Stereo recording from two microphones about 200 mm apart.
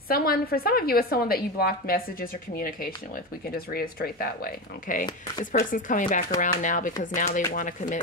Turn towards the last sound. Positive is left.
turn(degrees=40)  # may be behind; listen again after turning